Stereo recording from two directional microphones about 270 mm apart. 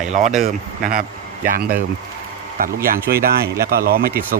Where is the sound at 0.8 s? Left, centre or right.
Right.